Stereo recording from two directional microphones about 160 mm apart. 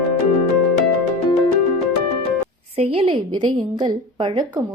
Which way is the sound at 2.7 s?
35° right (ahead or behind).